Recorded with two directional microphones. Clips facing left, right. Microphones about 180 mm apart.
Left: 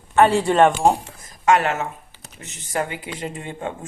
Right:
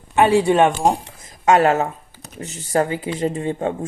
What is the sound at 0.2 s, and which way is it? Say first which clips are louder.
Speech: right 1 dB; 10° right (ahead or behind).